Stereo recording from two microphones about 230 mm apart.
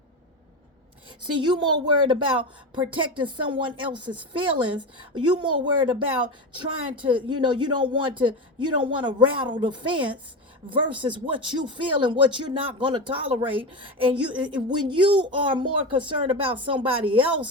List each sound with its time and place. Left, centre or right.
1.4 s speech: centre